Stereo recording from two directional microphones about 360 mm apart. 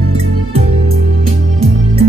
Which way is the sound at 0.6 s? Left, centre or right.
Centre.